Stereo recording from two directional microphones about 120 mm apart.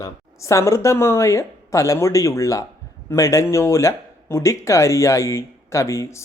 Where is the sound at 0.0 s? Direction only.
25° left (ahead or behind).